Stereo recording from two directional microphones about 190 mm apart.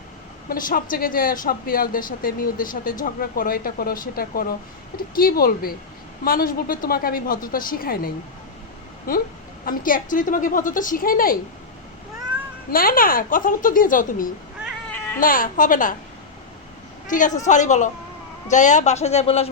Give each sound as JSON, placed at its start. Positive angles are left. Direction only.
{"t": 0.4, "sound": "speech", "side_deg": 50}
{"t": 12.7, "sound": "speech", "side_deg": 50}
{"t": 14.8, "sound": "a sound", "side_deg": 10}
{"t": 15.2, "sound": "speech", "side_deg": 45}
{"t": 17.1, "sound": "a man's voice", "side_deg": 40}